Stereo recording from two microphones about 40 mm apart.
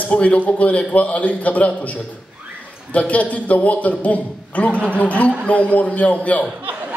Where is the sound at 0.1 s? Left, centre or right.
Left.